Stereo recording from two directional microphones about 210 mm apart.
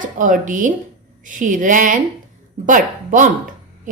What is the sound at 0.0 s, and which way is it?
A woman's voice, 40° right (ahead or behind).